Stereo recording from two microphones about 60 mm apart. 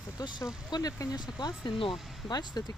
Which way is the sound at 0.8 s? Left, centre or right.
Left.